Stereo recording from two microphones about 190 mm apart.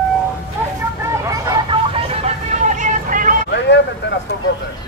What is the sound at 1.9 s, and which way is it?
Vehicle, 30° right (ahead or behind).